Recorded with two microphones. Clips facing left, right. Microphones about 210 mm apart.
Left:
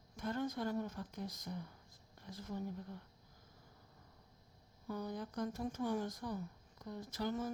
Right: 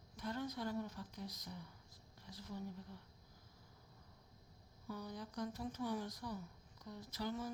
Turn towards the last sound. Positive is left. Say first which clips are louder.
# left 4 dB
turn(degrees=50)  # may be behind; listen again after turning